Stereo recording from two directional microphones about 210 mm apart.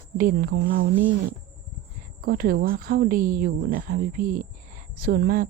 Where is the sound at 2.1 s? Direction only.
45° right (ahead or behind).